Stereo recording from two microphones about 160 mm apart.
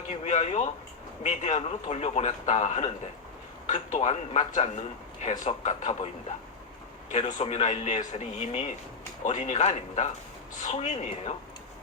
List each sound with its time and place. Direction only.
0.3 s a man's voice: 45° left (ahead or behind)
7.1 s a man's voice: 45° left (ahead or behind)